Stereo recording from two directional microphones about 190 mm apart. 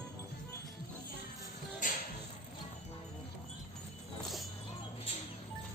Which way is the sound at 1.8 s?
45° left (ahead or behind).